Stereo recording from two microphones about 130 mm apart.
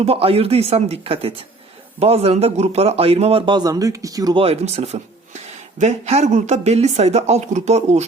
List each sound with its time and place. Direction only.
0.0 s a man's voice: 50° right (ahead or behind); by 4.4 s 30° right (ahead or behind)
4.4 s a woman's voice: 55° right (ahead or behind)